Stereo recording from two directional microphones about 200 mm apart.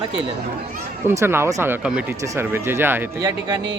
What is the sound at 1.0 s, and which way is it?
Speech, 10° right (ahead or behind).